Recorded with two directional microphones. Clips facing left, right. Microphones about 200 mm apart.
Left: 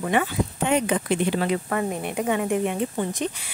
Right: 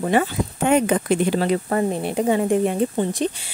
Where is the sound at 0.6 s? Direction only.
50° right (ahead or behind).